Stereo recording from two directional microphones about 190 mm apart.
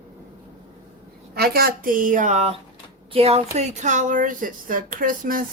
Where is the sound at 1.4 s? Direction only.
50° right (ahead or behind).